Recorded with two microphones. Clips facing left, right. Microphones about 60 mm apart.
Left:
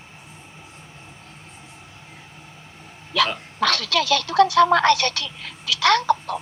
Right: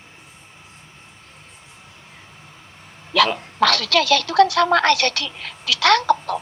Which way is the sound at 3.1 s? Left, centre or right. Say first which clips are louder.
Right 4 dB; right.